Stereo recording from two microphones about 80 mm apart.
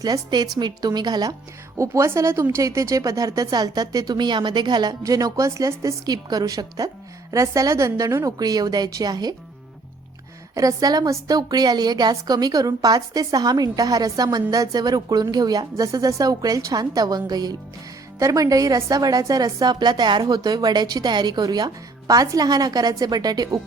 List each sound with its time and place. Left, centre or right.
0.0 s a woman's voice: right
1.8 s speech: right
6.1 s speech: right
10.5 s a woman's voice: right
18.2 s speech: right
20.2 s a woman's voice: right